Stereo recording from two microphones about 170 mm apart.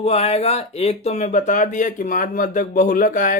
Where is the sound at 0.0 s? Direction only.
40° left (ahead or behind).